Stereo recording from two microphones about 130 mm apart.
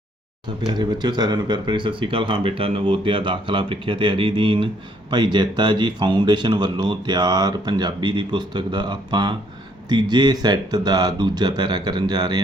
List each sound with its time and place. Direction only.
0.7 s speech: 35° right (ahead or behind)